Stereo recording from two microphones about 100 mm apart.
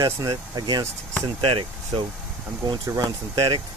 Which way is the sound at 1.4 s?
60° right (ahead or behind).